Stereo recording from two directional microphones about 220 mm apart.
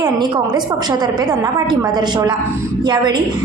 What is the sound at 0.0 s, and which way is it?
A woman's voice, 20° right (ahead or behind).